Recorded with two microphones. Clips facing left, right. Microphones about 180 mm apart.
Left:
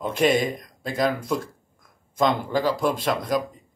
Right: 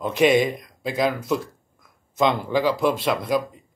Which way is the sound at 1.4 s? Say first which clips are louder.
Right 1 dB; 45° left (ahead or behind).